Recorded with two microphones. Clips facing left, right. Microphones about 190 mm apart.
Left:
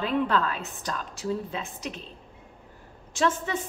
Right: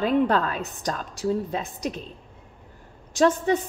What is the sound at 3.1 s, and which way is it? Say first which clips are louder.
Speech: right 6 dB; 40° right (ahead or behind).